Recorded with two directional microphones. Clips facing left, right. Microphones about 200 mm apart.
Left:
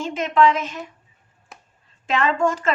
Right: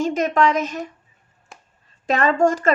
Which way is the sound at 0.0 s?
40° right (ahead or behind).